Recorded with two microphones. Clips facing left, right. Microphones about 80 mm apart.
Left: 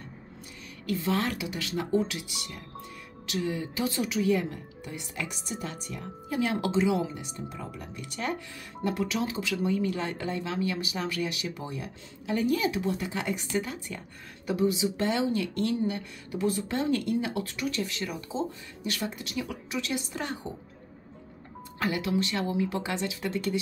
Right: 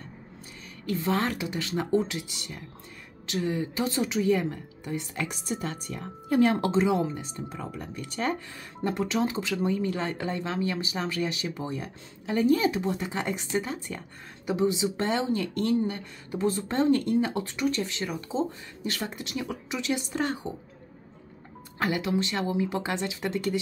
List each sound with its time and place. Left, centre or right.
0.8 s speech: right
5.3 s speech: right
21.7 s speech: right